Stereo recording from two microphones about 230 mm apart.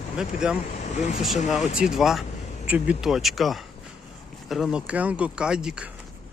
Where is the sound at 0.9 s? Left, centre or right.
Left.